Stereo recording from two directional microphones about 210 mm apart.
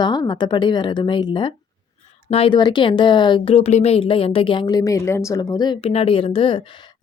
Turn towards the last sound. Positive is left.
turn(degrees=25)  # may be behind; listen again after turning